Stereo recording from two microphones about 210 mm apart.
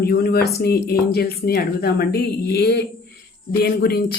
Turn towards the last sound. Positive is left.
turn(degrees=50)  # may be behind; listen again after turning